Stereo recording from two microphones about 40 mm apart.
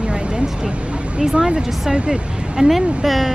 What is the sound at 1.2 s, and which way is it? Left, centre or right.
Speech, centre.